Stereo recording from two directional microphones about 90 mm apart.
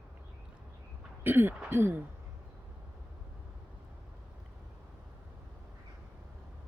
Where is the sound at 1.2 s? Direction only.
20° right (ahead or behind).